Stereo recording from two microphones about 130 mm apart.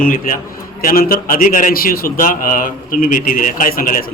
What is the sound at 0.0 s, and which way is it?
A man's voice, 90° left.